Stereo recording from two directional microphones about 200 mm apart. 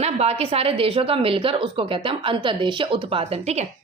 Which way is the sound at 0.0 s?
30° right (ahead or behind).